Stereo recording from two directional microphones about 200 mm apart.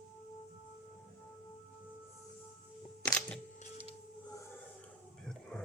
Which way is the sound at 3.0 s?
5° left (ahead or behind).